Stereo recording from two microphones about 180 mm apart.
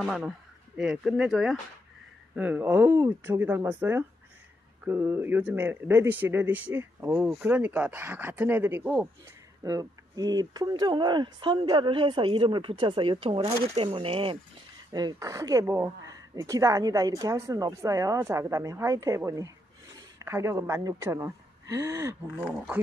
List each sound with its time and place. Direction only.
0.0 s speech: 5° right (ahead or behind)
9.6 s a woman's voice: 20° right (ahead or behind)